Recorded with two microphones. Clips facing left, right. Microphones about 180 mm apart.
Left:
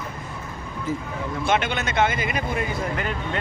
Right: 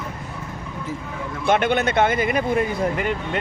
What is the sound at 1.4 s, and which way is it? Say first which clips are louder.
Speech: right 5 dB; 55° right (ahead or behind).